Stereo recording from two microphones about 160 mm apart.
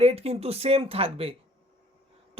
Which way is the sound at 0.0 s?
40° right (ahead or behind).